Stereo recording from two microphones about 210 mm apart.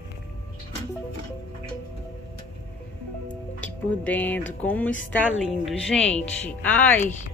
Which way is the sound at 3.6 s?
5° left (ahead or behind).